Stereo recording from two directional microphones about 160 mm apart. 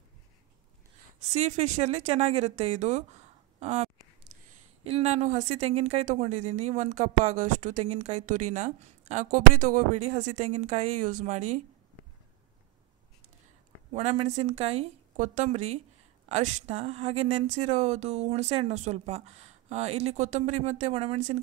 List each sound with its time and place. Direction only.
1.3 s speech: 45° right (ahead or behind)
13.9 s speech: 45° right (ahead or behind)